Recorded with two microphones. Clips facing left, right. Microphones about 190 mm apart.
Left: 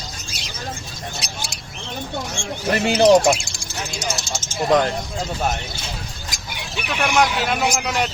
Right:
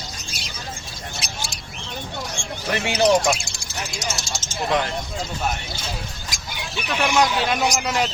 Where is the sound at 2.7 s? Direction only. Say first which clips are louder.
Left 5 dB; 30° left (ahead or behind).